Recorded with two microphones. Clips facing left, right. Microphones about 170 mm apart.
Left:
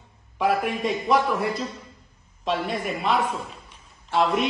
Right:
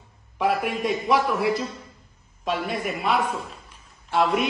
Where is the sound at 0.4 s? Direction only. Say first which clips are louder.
Left 1 dB; centre (ahead or behind).